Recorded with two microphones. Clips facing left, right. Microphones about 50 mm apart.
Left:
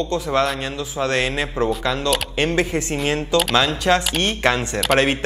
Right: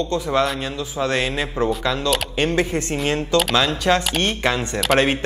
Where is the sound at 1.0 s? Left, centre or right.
Left.